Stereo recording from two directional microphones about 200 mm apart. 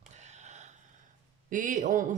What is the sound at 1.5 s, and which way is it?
Speech, 40° right (ahead or behind).